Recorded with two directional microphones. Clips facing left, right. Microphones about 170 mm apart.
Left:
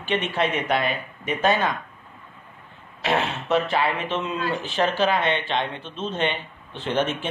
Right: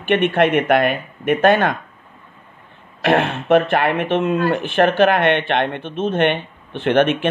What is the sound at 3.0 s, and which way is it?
Speech, 55° right (ahead or behind).